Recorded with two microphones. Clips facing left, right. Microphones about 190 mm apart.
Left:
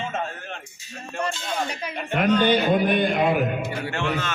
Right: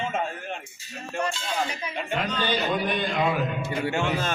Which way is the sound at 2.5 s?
55° left (ahead or behind).